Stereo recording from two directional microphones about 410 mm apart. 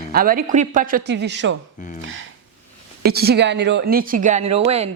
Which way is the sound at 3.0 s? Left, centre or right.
Right.